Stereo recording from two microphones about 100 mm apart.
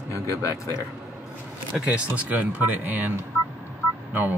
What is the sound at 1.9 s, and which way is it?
Speech, 15° right (ahead or behind).